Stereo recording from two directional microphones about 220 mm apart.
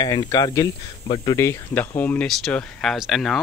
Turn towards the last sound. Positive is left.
turn(degrees=0)  # may be behind; listen again after turning